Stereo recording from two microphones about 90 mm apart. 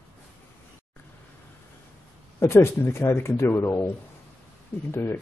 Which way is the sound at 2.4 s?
30° left (ahead or behind).